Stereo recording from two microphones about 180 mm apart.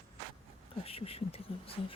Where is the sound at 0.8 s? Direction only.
30° left (ahead or behind).